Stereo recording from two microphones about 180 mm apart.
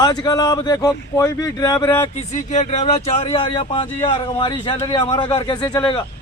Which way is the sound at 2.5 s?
40° left (ahead or behind).